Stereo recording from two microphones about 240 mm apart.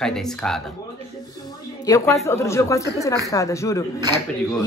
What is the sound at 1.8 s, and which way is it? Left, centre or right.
Speech, centre.